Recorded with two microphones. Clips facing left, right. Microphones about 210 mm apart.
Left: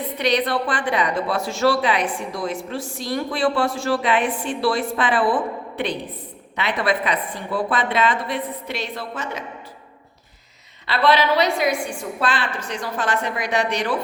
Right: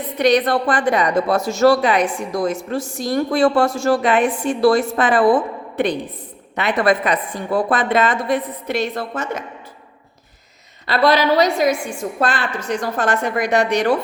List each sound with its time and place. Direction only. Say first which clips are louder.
0.2 s a woman's voice: right 6 dB; 45° right (ahead or behind)
10.8 s a woman's voice: right 3 dB; 40° right (ahead or behind)